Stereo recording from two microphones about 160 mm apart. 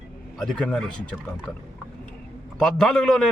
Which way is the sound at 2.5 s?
5° left (ahead or behind).